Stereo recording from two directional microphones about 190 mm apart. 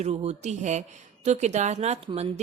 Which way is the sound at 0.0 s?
35° right (ahead or behind).